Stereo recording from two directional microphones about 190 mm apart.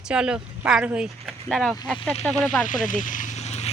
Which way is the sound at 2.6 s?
45° left (ahead or behind).